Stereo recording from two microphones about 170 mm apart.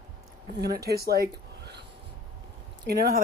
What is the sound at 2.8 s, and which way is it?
Speech, 65° right (ahead or behind).